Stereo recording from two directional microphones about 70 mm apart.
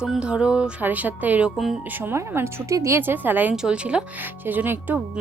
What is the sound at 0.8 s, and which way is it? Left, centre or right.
Speech, right.